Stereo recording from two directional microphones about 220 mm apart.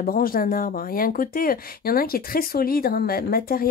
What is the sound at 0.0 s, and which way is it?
Speech, 40° left (ahead or behind).